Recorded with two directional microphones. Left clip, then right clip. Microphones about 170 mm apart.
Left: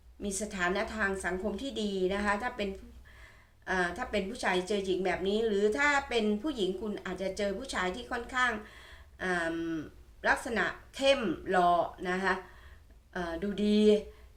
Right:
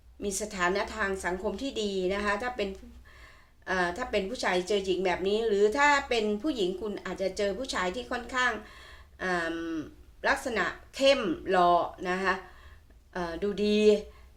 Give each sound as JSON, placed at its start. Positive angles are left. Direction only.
{"t": 0.2, "sound": "a woman's voice", "side_deg": -35}
{"t": 3.7, "sound": "a woman's voice", "side_deg": -35}